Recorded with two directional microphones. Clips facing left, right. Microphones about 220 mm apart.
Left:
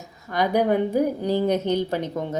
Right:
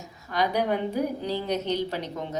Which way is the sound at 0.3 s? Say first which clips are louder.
Left 5 dB; 50° left (ahead or behind).